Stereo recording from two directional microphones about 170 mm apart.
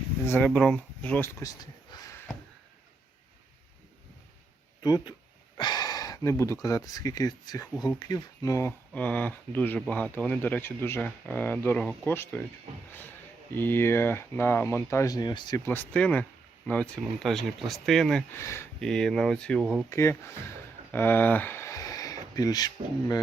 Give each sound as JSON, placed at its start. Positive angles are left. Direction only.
{"t": 0.3, "sound": "speech", "side_deg": 10}
{"t": 4.8, "sound": "speech", "side_deg": 25}
{"t": 8.9, "sound": "speech", "side_deg": 10}
{"t": 13.5, "sound": "speech", "side_deg": 10}
{"t": 18.3, "sound": "speech", "side_deg": 15}
{"t": 18.8, "sound": "speech", "side_deg": 5}
{"t": 19.9, "sound": "speech", "side_deg": 15}